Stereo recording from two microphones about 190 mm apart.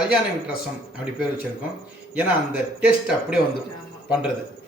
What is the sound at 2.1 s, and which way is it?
A man's voice, 5° right (ahead or behind).